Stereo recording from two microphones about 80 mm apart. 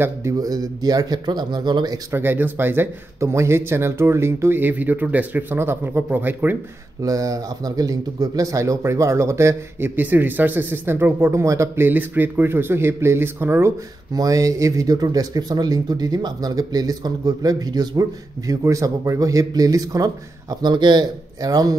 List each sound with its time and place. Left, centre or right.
0.0 s speech: right
0.4 s a man's voice: right
2.1 s a man's voice: right
3.2 s a man's voice: right
7.0 s speech: right
11.4 s a man's voice: right
14.1 s speech: right
18.5 s speech: right